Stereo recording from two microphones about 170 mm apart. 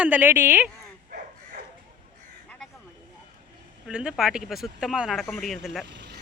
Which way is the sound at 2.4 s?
5° left (ahead or behind).